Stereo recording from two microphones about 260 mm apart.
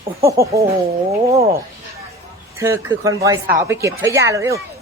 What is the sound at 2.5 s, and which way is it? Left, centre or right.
Speech, centre.